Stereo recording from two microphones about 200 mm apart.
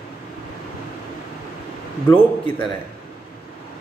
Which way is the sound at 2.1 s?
5° left (ahead or behind).